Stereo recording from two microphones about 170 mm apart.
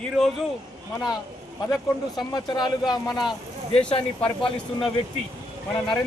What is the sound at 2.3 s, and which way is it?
Speech, 25° left (ahead or behind).